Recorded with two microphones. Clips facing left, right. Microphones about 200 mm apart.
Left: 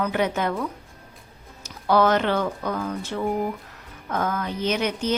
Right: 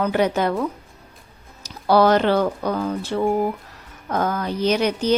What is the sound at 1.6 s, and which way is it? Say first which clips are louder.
A woman's voice: right 4 dB; 35° right (ahead or behind).